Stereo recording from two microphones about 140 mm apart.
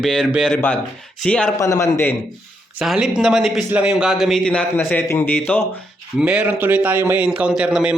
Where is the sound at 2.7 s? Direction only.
5° right (ahead or behind); by 5.6 s 15° left (ahead or behind).